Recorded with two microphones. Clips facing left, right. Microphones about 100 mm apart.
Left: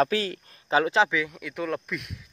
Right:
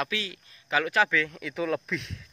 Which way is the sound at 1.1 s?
10° left (ahead or behind).